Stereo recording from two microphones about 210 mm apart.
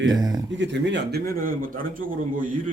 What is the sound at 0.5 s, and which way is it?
A man's voice, 60° right (ahead or behind).